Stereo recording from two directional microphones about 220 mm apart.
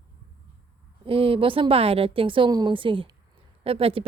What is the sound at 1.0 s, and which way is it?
A woman's voice, 25° right (ahead or behind).